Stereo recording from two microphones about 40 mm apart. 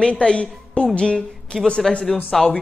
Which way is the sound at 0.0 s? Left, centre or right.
Left.